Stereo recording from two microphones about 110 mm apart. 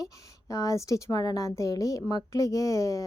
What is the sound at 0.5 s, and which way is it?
A woman's voice, 30° left (ahead or behind).